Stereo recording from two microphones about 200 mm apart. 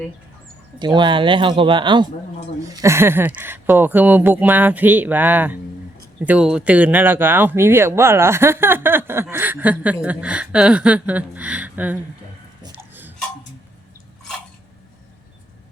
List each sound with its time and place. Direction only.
0.8 s speech: 20° right (ahead or behind)
2.8 s speech: 10° right (ahead or behind)
12.7 s a sound: 10° right (ahead or behind)